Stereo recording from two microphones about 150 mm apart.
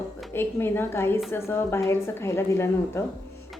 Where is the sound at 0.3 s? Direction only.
15° left (ahead or behind).